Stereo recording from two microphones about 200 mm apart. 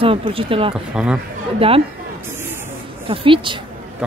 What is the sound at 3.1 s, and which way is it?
Speech, 25° right (ahead or behind).